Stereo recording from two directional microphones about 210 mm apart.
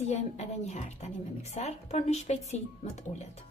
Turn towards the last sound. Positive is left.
turn(degrees=35)  # may be behind; listen again after turning